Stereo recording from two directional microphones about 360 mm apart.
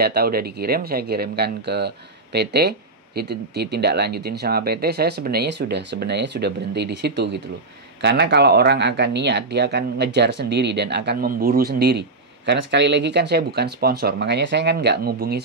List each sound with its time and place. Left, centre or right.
0.0 s speech: right